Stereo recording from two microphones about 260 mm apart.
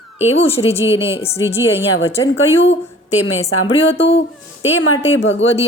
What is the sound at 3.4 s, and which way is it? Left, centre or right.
Speech, left.